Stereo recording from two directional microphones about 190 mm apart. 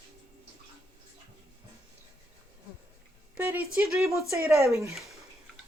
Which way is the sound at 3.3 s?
10° right (ahead or behind).